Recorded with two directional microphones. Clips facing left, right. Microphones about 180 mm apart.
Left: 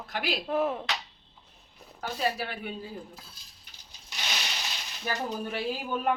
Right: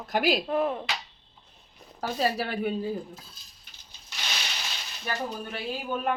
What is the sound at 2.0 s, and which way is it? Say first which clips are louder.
Speech: right 3 dB; 40° right (ahead or behind).